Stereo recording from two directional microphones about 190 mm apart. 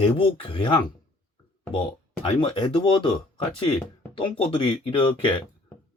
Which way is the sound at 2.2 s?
25° left (ahead or behind).